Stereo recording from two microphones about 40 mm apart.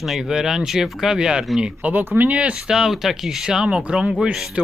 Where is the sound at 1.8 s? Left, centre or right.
Right.